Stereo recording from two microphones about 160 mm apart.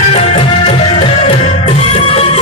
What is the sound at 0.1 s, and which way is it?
Music, 35° left (ahead or behind).